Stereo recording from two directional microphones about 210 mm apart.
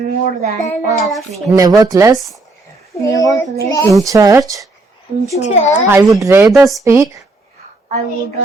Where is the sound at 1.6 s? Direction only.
15° right (ahead or behind).